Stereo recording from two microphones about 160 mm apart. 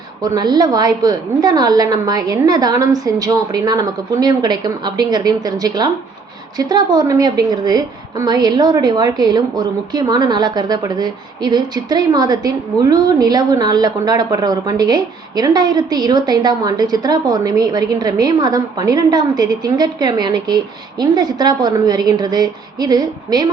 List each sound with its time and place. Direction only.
0.2 s a woman's voice: 25° right (ahead or behind)